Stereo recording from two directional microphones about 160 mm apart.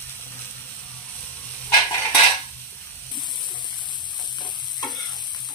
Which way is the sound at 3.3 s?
25° left (ahead or behind).